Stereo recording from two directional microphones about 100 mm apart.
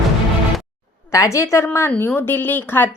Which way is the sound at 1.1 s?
30° left (ahead or behind).